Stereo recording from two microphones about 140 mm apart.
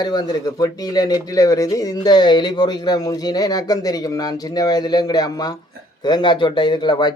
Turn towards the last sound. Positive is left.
turn(degrees=30)  # may be behind; listen again after turning